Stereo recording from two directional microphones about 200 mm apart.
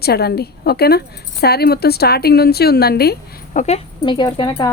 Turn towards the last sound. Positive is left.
turn(degrees=25)  # may be behind; listen again after turning